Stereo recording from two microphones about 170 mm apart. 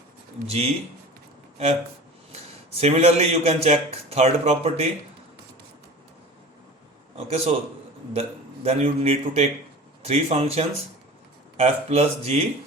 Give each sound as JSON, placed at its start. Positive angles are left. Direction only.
{"t": 2.3, "sound": "a man's voice", "side_deg": -40}
{"t": 7.3, "sound": "a man's voice", "side_deg": -35}